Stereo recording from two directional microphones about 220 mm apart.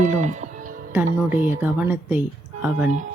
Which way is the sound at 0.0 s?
35° right (ahead or behind).